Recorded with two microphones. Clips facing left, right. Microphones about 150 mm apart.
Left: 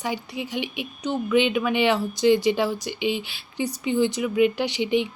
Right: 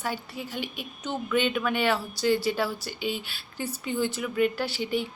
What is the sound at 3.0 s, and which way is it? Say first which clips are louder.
Speech: left 5 dB; 40° right (ahead or behind).